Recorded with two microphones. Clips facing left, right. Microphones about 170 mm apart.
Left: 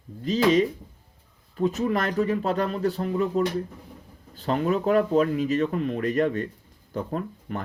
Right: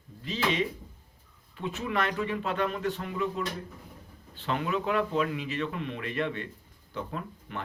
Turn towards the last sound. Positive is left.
turn(degrees=40)  # may be behind; listen again after turning